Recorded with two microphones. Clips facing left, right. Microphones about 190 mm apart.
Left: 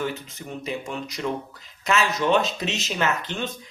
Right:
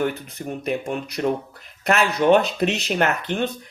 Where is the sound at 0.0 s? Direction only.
60° right (ahead or behind).